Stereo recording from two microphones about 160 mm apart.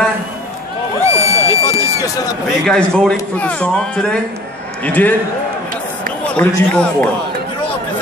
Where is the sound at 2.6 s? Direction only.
5° left (ahead or behind).